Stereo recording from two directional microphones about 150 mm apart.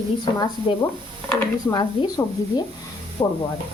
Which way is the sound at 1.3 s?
25° left (ahead or behind).